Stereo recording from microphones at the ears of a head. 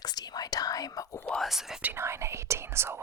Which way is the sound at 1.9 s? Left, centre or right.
Right.